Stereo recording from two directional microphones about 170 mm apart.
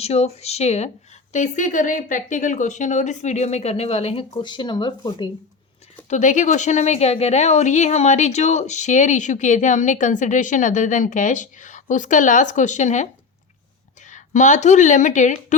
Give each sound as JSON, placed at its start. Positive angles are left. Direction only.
{"t": 0.0, "sound": "speech", "side_deg": 35}
{"t": 6.1, "sound": "speech", "side_deg": 45}
{"t": 14.1, "sound": "speech", "side_deg": 45}